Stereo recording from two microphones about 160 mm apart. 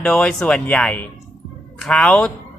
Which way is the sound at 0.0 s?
5° left (ahead or behind).